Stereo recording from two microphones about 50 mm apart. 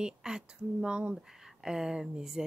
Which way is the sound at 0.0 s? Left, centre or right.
Centre.